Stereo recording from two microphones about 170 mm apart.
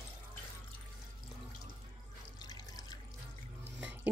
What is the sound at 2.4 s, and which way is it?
Water, 25° left (ahead or behind).